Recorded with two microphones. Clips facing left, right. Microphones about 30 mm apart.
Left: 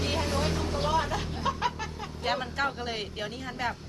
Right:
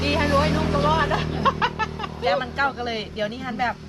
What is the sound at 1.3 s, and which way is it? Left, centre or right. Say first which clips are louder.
Music: right 8 dB; right.